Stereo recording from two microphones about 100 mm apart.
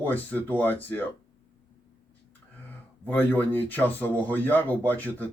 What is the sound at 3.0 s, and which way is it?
Speech, 20° left (ahead or behind).